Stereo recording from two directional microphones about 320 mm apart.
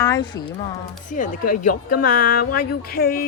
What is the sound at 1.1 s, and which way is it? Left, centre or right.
Speech, left.